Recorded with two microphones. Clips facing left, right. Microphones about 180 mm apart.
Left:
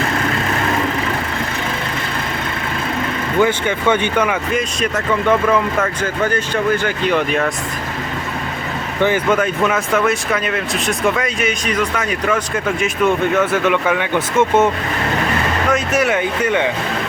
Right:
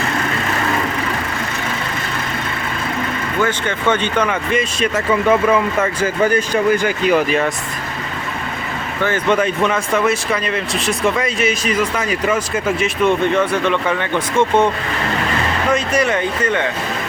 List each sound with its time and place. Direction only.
3.4 s speech: 10° left (ahead or behind)
9.0 s speech: 15° left (ahead or behind)
9.3 s speech: centre (ahead or behind)
15.7 s speech: 5° left (ahead or behind)